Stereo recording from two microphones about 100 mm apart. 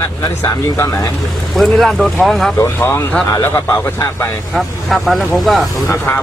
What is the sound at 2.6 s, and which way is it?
Speech, 30° left (ahead or behind).